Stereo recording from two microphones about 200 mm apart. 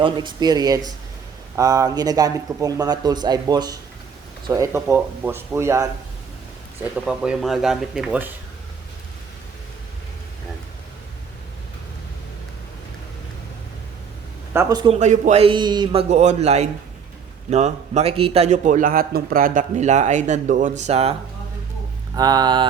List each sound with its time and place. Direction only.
0.0 s speech: 25° right (ahead or behind)
6.9 s speech: 5° right (ahead or behind)
14.5 s speech: 15° right (ahead or behind)
14.9 s a man's voice: 35° right (ahead or behind)
22.1 s speech: 20° right (ahead or behind)